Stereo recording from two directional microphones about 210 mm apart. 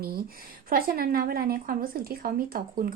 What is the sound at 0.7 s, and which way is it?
A woman's voice, 45° right (ahead or behind).